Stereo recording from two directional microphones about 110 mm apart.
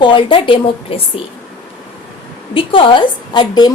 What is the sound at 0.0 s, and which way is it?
A woman's voice, 50° left (ahead or behind).